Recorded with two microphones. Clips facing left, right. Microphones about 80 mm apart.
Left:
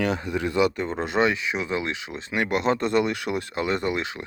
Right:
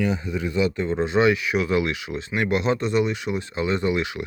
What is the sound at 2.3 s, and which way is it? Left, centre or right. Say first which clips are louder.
Speech: right 1 dB; left.